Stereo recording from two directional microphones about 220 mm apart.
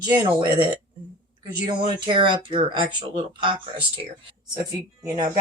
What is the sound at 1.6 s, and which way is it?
Speech, 20° right (ahead or behind).